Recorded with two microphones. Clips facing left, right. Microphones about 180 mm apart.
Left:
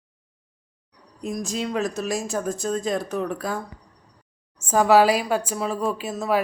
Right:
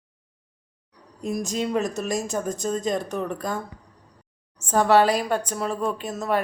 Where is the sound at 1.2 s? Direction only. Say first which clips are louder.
Right 1 dB; centre (ahead or behind).